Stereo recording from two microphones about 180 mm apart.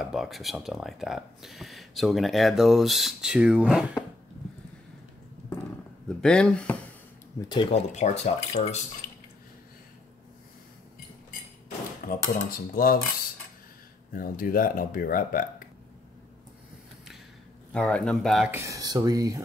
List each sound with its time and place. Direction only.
0.0 s speech: centre (ahead or behind)
6.0 s speech: 5° left (ahead or behind)
7.4 s speech: 25° left (ahead or behind)
7.9 s speech: 40° left (ahead or behind)
12.1 s speech: 55° left (ahead or behind)
14.1 s speech: 50° left (ahead or behind)
17.7 s speech: 5° left (ahead or behind)
18.5 s speech: 20° right (ahead or behind)